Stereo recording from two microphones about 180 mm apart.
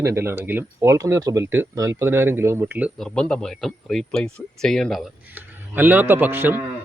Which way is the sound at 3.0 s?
5° left (ahead or behind).